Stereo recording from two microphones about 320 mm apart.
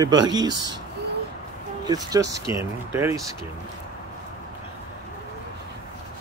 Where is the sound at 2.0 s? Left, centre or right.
Centre.